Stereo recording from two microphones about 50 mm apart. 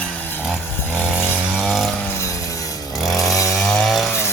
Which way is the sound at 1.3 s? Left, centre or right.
Right.